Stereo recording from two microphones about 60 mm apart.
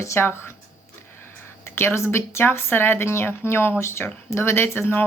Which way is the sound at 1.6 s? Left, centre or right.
Left.